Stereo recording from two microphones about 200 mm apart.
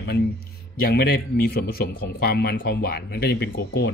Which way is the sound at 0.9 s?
50° left (ahead or behind).